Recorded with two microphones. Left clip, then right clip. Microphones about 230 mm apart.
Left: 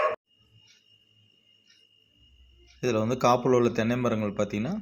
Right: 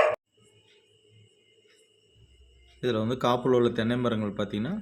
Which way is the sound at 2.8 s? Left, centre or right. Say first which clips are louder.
Left 2 dB; centre.